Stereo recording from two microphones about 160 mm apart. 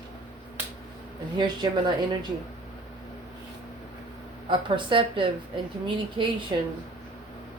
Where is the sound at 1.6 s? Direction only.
30° right (ahead or behind).